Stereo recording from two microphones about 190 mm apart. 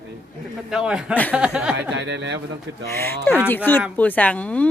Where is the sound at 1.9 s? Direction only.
70° right (ahead or behind).